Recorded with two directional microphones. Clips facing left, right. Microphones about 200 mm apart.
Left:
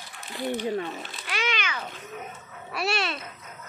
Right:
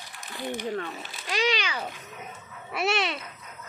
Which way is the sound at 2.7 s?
20° right (ahead or behind).